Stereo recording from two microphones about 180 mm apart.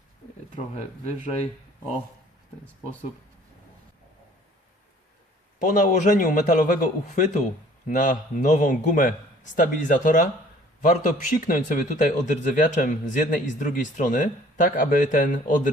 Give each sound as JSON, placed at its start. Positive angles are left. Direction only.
{"t": 0.5, "sound": "speech", "side_deg": 40}
{"t": 5.5, "sound": "a man's voice", "side_deg": 45}